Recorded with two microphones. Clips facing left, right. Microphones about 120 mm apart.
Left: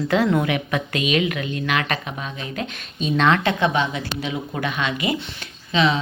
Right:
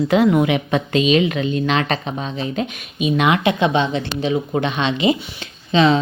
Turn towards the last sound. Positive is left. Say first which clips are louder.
# right 5 dB
turn(degrees=-30)  # may be behind; listen again after turning